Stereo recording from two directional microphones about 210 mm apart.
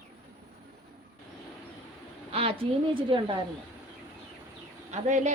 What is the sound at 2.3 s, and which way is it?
A woman's voice, 30° right (ahead or behind).